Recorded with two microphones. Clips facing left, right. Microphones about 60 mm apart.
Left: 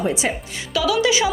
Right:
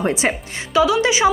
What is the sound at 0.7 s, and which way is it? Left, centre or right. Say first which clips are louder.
Speech: right 3 dB; right.